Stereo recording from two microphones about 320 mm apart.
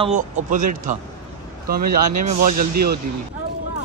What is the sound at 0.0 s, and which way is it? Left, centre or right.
Speech, right.